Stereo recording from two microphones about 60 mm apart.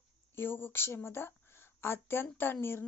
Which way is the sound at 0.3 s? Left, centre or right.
Left.